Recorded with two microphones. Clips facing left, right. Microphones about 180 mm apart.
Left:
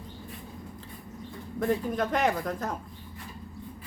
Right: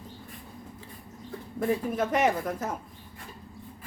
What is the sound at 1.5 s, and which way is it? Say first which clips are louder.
Speech: even; 5° right (ahead or behind).